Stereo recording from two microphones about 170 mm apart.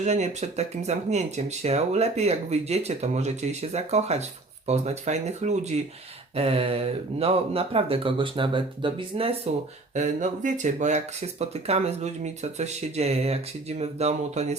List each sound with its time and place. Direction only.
0.0 s speech: 40° right (ahead or behind)
9.9 s speech: 45° right (ahead or behind)